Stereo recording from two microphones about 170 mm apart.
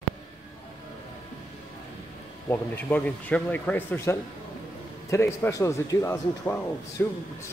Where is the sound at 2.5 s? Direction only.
10° left (ahead or behind).